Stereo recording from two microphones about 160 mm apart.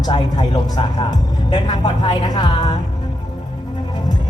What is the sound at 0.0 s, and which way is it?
Speech, 25° left (ahead or behind).